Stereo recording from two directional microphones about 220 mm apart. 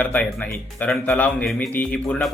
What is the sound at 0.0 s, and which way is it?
A man's voice, 5° left (ahead or behind).